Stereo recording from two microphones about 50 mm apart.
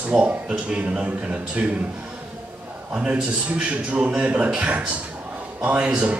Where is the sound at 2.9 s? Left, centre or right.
Right.